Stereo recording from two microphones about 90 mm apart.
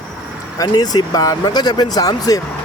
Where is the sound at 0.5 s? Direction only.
50° left (ahead or behind).